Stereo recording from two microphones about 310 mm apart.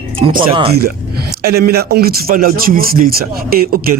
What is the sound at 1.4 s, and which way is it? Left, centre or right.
A man's voice, right.